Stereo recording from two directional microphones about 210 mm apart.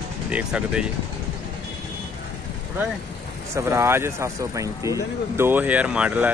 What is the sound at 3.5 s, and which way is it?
Speech, 10° right (ahead or behind).